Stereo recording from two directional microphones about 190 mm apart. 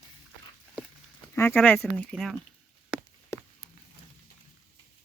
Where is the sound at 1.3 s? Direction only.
10° left (ahead or behind).